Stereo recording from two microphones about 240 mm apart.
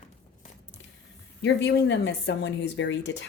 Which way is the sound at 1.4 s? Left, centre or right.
Left.